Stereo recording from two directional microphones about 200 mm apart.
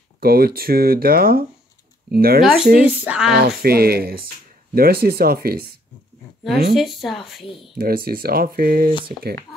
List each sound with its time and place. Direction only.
0.2 s speech: 50° right (ahead or behind)
2.4 s speech: 5° right (ahead or behind)
3.3 s speech: 50° right (ahead or behind)
6.7 s speech: centre (ahead or behind)
7.7 s speech: 50° right (ahead or behind)